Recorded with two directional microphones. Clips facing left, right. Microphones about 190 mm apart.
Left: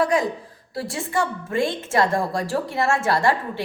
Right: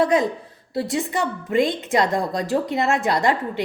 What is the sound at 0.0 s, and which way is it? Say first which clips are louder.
A woman's voice: right 2 dB; 20° right (ahead or behind).